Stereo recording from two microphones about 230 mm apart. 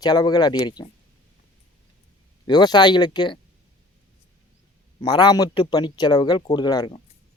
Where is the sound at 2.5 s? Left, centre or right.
Centre.